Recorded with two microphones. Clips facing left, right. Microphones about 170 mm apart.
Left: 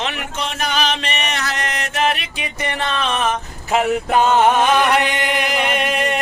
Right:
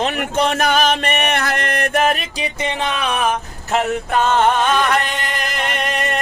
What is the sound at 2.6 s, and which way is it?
Speech, 15° right (ahead or behind).